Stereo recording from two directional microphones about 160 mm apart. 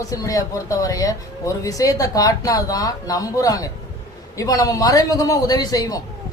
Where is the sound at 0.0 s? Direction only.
20° left (ahead or behind).